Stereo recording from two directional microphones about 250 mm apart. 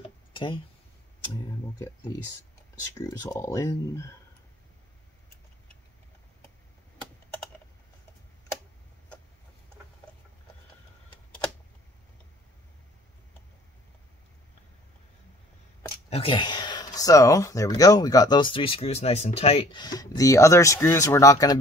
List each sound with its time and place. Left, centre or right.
0.3 s a sound: centre
3.1 s speech: centre
16.1 s speech: left